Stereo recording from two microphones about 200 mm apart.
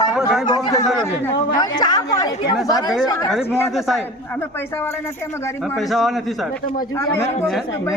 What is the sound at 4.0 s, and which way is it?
A man's voice, 10° left (ahead or behind).